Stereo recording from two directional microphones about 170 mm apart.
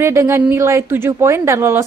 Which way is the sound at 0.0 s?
15° right (ahead or behind).